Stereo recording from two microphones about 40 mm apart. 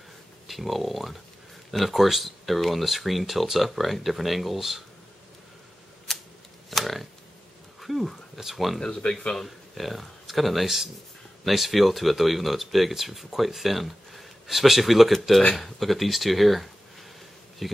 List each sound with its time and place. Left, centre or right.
0.5 s speech: centre
6.1 s camera: centre
6.8 s a sound: centre
8.7 s speech: centre
9.8 s speech: centre